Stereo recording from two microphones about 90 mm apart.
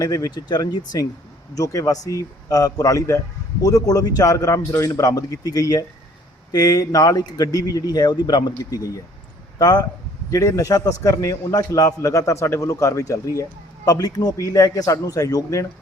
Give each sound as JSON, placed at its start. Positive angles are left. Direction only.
{"t": 0.0, "sound": "a man's voice", "side_deg": 40}
{"t": 1.5, "sound": "a man's voice", "side_deg": 40}
{"t": 8.7, "sound": "a man's voice", "side_deg": 40}
{"t": 10.3, "sound": "a man's voice", "side_deg": 35}